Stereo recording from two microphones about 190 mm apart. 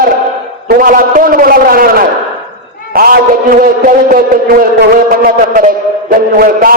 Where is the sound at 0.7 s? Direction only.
45° right (ahead or behind).